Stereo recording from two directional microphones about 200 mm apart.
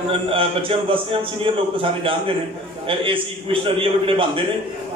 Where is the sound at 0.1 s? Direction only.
25° right (ahead or behind).